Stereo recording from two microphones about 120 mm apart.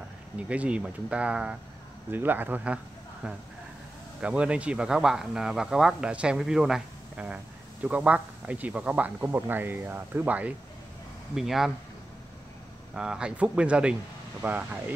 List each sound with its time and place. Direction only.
0.4 s speech: 10° right (ahead or behind)
4.2 s speech: 10° right (ahead or behind)
12.9 s speech: 5° right (ahead or behind)